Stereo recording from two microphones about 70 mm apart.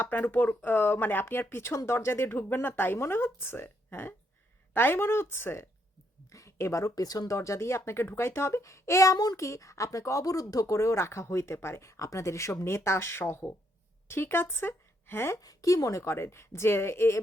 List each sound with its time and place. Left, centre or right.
0.0 s speech: left
6.3 s speech: left
9.1 s a child's voice: left
9.4 s a woman's voice: left
15.4 s speech: left